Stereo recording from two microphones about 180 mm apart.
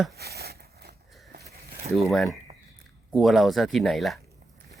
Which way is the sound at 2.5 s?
40° right (ahead or behind).